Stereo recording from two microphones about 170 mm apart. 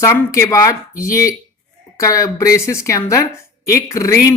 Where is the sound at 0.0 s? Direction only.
15° left (ahead or behind).